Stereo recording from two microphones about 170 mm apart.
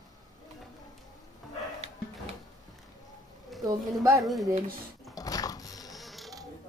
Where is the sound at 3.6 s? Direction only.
20° right (ahead or behind).